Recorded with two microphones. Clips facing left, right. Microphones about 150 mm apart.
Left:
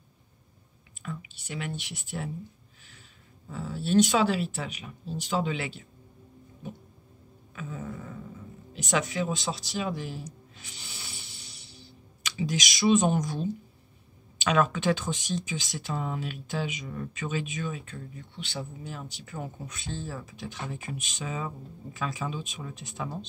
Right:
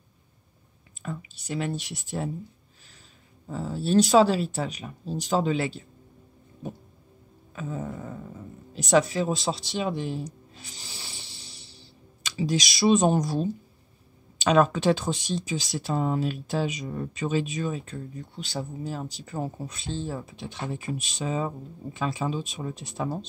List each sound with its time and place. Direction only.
1.0 s speech: 35° right (ahead or behind)
3.4 s speech: 35° right (ahead or behind)
7.5 s speech: 35° right (ahead or behind)